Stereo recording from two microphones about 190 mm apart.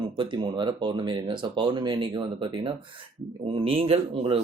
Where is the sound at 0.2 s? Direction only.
25° right (ahead or behind).